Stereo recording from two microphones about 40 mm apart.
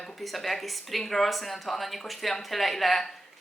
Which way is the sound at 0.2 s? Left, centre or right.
Centre.